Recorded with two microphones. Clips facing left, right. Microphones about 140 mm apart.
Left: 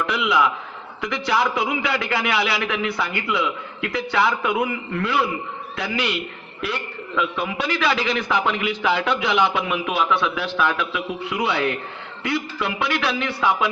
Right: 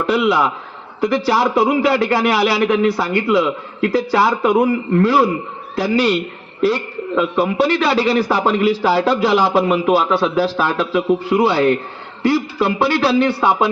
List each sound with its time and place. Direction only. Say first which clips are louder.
0.3 s a man's voice: right 4 dB; 30° right (ahead or behind)